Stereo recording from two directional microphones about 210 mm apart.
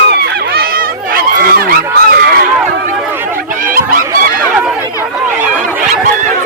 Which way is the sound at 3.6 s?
40° right (ahead or behind).